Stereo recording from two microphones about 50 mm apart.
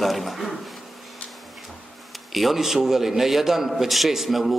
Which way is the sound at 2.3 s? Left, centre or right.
Centre.